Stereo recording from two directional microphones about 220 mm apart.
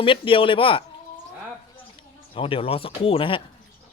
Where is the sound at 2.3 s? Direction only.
25° left (ahead or behind).